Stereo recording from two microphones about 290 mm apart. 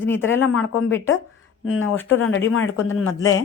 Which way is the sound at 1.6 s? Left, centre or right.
Left.